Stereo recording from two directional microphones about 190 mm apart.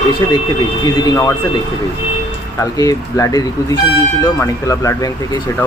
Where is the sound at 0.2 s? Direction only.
20° left (ahead or behind).